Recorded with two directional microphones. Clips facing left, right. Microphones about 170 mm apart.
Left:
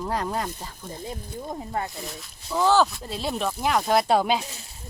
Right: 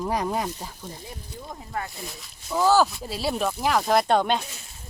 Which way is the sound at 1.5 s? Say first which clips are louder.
Left 3 dB; 25° left (ahead or behind).